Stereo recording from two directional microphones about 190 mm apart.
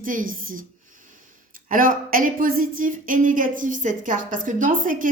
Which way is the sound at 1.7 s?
45° right (ahead or behind).